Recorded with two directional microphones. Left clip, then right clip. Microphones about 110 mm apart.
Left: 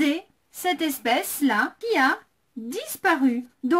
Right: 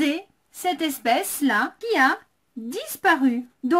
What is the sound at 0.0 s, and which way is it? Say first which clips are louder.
Speech: even; 15° right (ahead or behind).